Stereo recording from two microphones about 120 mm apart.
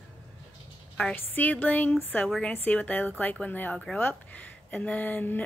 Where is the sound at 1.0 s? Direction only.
10° left (ahead or behind).